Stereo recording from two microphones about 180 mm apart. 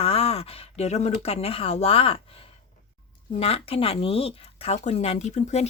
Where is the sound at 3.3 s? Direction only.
35° left (ahead or behind).